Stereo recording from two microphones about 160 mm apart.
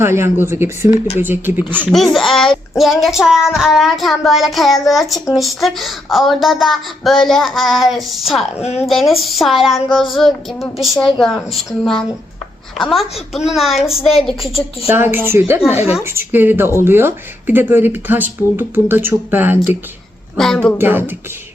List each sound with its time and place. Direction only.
0.0 s speech: 15° right (ahead or behind)
2.1 s child singing: centre (ahead or behind)
13.3 s child singing: centre (ahead or behind)
14.8 s speech: 15° right (ahead or behind)
20.3 s child singing: 5° left (ahead or behind)
20.7 s speech: 15° right (ahead or behind)